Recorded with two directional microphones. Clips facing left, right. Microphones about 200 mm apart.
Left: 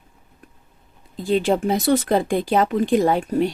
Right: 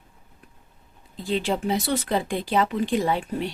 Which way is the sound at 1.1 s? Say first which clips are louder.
Left 6 dB; 50° left (ahead or behind).